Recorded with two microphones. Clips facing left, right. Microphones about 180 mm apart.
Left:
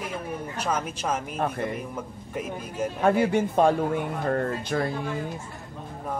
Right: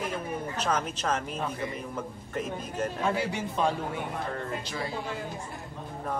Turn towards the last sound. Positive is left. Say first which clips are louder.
# left 7 dB
turn(degrees=55)  # may be behind; listen again after turning